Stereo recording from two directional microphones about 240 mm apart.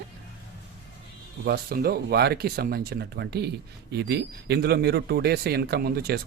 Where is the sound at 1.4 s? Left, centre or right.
Right.